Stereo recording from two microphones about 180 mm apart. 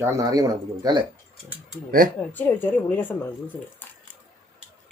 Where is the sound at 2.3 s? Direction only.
10° left (ahead or behind).